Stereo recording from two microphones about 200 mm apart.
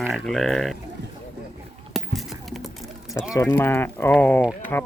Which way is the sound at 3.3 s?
10° left (ahead or behind).